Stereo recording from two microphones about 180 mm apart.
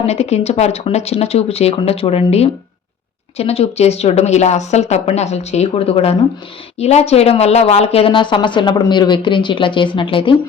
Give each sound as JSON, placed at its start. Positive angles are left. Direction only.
{"t": 0.0, "sound": "speech", "side_deg": 35}